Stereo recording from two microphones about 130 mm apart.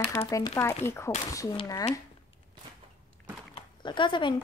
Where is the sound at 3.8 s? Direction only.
35° left (ahead or behind).